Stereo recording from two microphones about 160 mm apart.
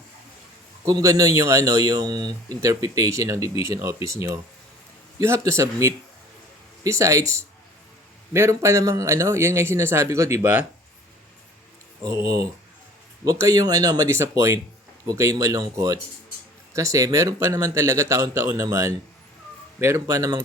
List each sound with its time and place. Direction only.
0.9 s speech: 20° right (ahead or behind)
12.0 s speech: 20° right (ahead or behind)